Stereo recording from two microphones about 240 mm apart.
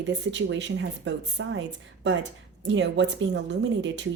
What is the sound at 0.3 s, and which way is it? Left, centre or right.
A woman's voice, right.